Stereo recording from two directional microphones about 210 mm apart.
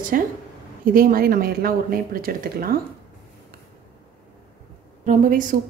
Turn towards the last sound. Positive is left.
turn(degrees=-40)  # may be behind; listen again after turning